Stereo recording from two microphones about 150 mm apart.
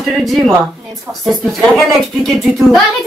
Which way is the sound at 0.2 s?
Centre (ahead or behind).